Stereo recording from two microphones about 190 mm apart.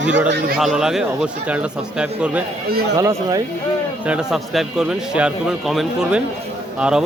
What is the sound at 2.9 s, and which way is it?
Speech, 20° right (ahead or behind).